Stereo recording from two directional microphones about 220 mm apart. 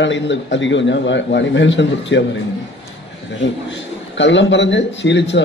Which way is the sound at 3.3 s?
55° left (ahead or behind).